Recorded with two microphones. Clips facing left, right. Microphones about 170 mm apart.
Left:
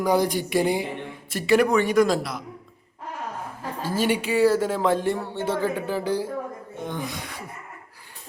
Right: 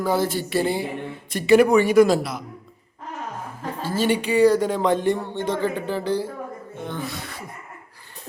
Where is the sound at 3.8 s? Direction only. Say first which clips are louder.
Right 2 dB; 10° left (ahead or behind).